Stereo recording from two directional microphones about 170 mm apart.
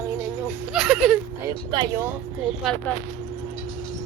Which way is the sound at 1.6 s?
20° right (ahead or behind).